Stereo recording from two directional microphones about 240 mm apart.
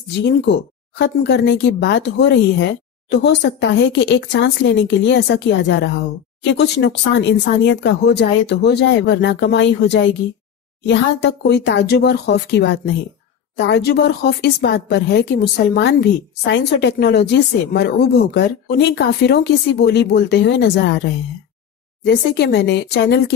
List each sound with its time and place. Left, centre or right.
0.2 s speech: left